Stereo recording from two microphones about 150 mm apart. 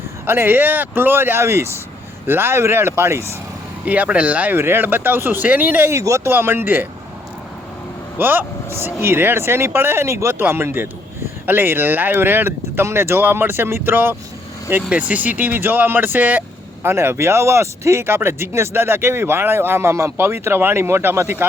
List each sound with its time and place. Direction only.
0.3 s speech: 15° right (ahead or behind)
8.2 s speech: 15° right (ahead or behind)